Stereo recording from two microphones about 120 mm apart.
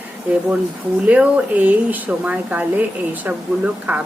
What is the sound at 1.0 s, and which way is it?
Speech, 10° right (ahead or behind).